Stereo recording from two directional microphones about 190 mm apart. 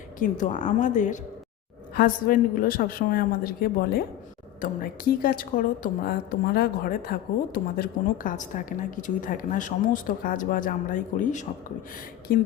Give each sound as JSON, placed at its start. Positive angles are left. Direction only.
{"t": 0.2, "sound": "a woman's voice", "side_deg": 40}